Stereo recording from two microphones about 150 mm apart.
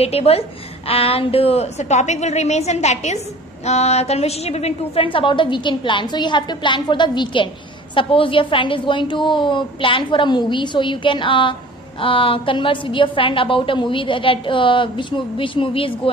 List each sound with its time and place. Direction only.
0.0 s a woman's voice: 40° left (ahead or behind)